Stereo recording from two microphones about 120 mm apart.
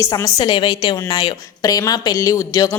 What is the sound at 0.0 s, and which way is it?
A woman's voice, 25° left (ahead or behind).